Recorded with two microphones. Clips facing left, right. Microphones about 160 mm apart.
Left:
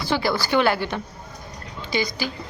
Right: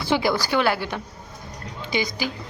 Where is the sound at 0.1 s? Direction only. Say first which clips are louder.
Right 2 dB; 20° right (ahead or behind).